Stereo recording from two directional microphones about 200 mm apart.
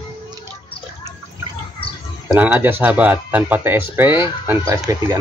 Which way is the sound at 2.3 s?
10° right (ahead or behind).